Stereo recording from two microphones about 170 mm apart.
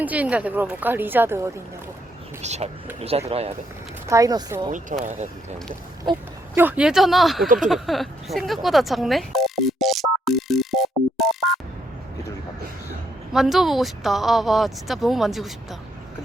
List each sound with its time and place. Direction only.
0.0 s a woman's voice: 10° right (ahead or behind)
2.4 s speech: 40° right (ahead or behind)
4.0 s speech: 20° right (ahead or behind)
4.7 s speech: 45° right (ahead or behind)
6.6 s speech: 10° right (ahead or behind)
7.4 s speech: 50° right (ahead or behind)
7.7 s telephone bell ringing: centre (ahead or behind)
13.3 s speech: centre (ahead or behind)